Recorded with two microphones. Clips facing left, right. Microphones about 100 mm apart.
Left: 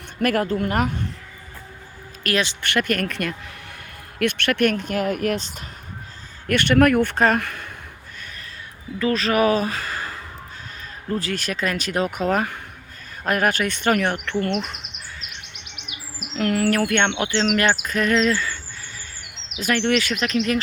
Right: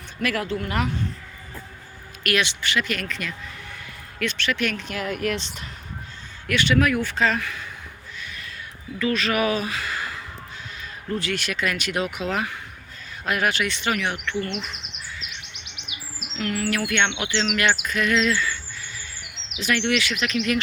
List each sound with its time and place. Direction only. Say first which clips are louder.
0.2 s speech: left 5 dB; 45° left (ahead or behind)
2.2 s speech: left 1 dB; 35° left (ahead or behind)
2.6 s speech: left 4 dB; 55° left (ahead or behind)
6.5 s speech: left 4 dB; 55° left (ahead or behind)
9.0 s speech: left 3 dB; 35° left (ahead or behind); by 14.8 s 50° left (ahead or behind)
15.7 s chirp: left 1 dB; 50° left (ahead or behind)
19.5 s speech: left 3 dB; 40° left (ahead or behind)